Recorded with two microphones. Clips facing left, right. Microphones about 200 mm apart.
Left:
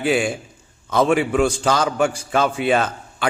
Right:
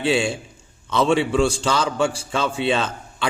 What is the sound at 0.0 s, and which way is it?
A man's voice, 25° right (ahead or behind).